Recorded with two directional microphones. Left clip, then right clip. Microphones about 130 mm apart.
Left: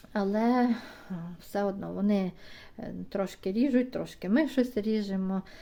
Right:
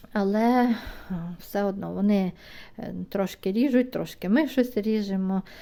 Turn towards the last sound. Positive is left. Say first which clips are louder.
# right 4 dB
turn(degrees=-35)  # may be behind; listen again after turning